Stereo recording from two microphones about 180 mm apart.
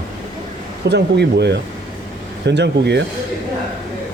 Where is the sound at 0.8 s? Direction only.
70° right (ahead or behind).